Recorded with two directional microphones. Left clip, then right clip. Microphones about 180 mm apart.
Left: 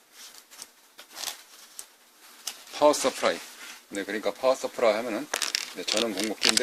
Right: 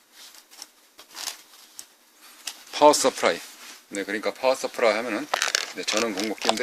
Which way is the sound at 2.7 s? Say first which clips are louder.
Right 5 dB; 40° right (ahead or behind).